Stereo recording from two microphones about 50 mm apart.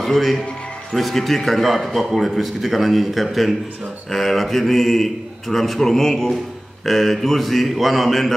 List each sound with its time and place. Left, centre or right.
0.0 s a man's voice: centre